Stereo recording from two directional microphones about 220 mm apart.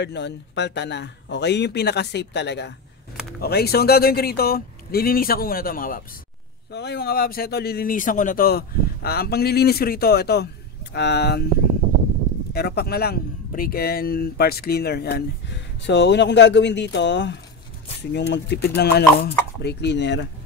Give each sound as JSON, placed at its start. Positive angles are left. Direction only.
{"t": 0.0, "sound": "speech", "side_deg": 50}
{"t": 12.5, "sound": "speech", "side_deg": 45}